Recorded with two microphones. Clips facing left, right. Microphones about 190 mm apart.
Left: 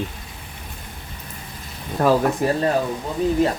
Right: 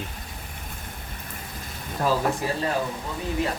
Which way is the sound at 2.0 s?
65° left (ahead or behind).